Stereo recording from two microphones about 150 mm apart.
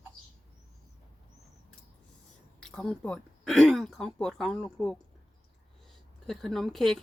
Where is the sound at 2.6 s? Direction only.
5° left (ahead or behind).